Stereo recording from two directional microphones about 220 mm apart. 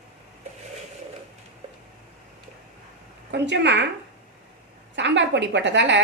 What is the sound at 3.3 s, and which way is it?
Speech, 50° right (ahead or behind).